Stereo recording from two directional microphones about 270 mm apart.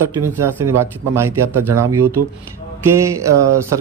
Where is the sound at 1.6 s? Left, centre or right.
Right.